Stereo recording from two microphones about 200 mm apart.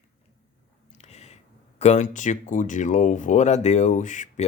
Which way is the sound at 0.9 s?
35° left (ahead or behind).